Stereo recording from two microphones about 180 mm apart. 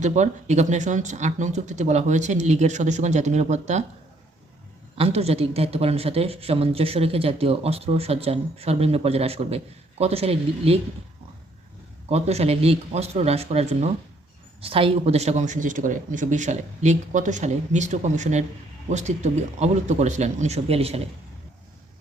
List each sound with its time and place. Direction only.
0.0 s speech: 40° right (ahead or behind)
4.9 s speech: 35° right (ahead or behind)
12.0 s speech: 35° right (ahead or behind)